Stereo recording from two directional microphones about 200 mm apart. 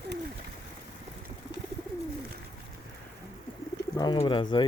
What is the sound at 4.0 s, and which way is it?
Speech, 25° left (ahead or behind).